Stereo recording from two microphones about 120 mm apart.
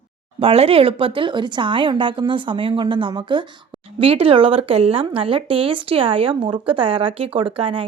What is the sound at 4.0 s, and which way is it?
Speech, 50° right (ahead or behind).